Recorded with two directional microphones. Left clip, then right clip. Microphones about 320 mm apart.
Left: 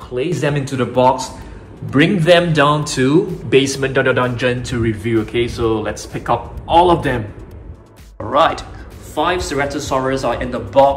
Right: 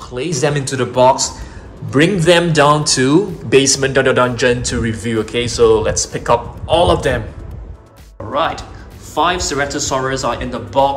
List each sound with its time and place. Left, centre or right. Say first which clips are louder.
0.1 s a man's voice: right 1 dB; centre
8.2 s a man's voice: left 4 dB; centre